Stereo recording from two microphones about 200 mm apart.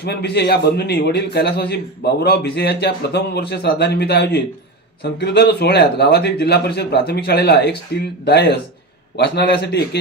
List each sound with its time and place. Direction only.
0.0 s a man's voice: 55° left (ahead or behind)